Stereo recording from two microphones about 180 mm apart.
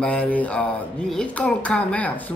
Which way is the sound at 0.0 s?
5° left (ahead or behind).